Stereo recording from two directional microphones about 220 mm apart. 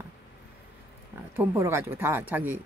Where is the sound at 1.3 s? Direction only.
10° right (ahead or behind).